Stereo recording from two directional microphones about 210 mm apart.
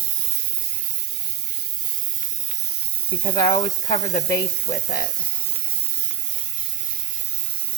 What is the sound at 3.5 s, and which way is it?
Speech, 35° left (ahead or behind).